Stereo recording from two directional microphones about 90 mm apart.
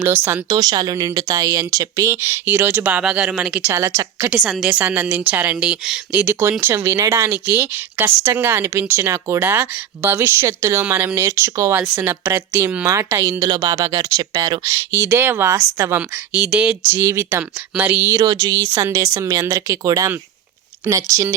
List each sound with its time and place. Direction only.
0.0 s a woman's voice: 25° right (ahead or behind)
0.4 s speech: 50° right (ahead or behind); by 3.7 s 15° right (ahead or behind)
3.7 s speech: 30° right (ahead or behind)
4.6 s a woman's voice: 15° right (ahead or behind)
6.1 s a woman's voice: 15° right (ahead or behind)
6.4 s a woman's voice: 30° right (ahead or behind)
11.1 s speech: 30° right (ahead or behind)
11.8 s a woman's voice: 20° right (ahead or behind)
13.4 s speech: 40° right (ahead or behind)
14.7 s a woman's voice: 25° right (ahead or behind)
16.0 s a woman's voice: 15° right (ahead or behind)
16.9 s a woman's voice: 30° right (ahead or behind)
17.7 s a woman's voice: 20° right (ahead or behind)
18.3 s speech: 40° right (ahead or behind)